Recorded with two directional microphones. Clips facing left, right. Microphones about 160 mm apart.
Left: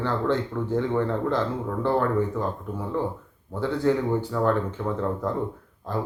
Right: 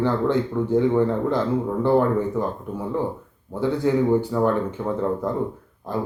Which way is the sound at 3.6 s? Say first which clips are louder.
Right 3 dB; 15° right (ahead or behind).